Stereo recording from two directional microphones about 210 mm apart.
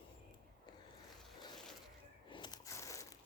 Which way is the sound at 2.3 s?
20° left (ahead or behind).